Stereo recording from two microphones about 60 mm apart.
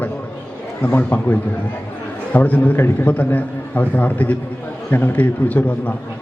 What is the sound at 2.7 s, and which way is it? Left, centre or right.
Speech, left.